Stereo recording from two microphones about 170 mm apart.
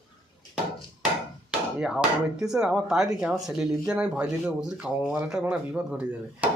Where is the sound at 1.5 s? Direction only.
5° right (ahead or behind).